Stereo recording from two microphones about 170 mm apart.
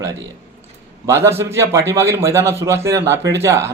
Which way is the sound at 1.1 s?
15° right (ahead or behind).